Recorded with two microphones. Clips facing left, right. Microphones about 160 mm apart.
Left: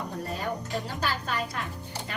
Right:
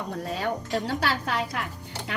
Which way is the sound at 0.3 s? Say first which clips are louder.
Right 5 dB; 75° right (ahead or behind).